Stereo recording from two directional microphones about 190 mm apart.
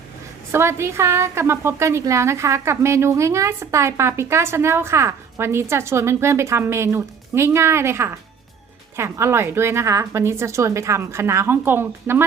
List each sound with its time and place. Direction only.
0.5 s a woman's voice: 15° right (ahead or behind)